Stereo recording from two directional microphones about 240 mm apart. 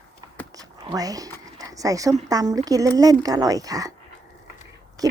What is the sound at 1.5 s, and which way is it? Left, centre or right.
A woman's voice, centre.